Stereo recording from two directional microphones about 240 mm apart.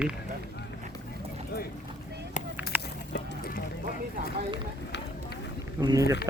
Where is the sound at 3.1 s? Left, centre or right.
Left.